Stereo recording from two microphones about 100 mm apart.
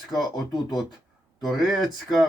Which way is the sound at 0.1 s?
Centre (ahead or behind).